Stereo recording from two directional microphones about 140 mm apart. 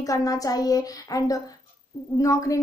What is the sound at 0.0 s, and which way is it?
A child's voice, 25° left (ahead or behind).